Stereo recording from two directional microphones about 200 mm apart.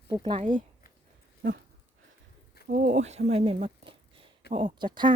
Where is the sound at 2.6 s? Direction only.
40° right (ahead or behind).